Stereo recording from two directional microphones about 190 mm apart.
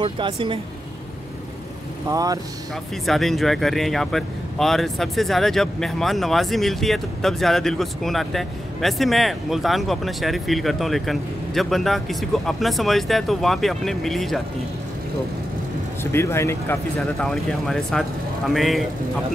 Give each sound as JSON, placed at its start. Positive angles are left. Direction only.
{"t": 0.0, "sound": "speech", "side_deg": -25}
{"t": 2.0, "sound": "speech", "side_deg": -20}
{"t": 3.1, "sound": "speech", "side_deg": 0}
{"t": 16.0, "sound": "speech", "side_deg": 15}